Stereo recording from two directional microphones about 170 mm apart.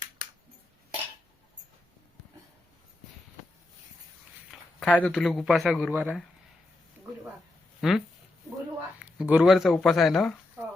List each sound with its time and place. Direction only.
4.5 s a sound: 5° right (ahead or behind)
4.9 s speech: 5° left (ahead or behind)
5.9 s speech: 10° right (ahead or behind)
7.8 s speech: centre (ahead or behind)
9.0 s speech: 5° right (ahead or behind)